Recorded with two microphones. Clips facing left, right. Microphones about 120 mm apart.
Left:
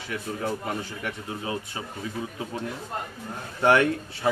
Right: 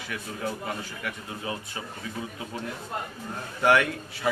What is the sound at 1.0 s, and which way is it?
Speech, 25° left (ahead or behind).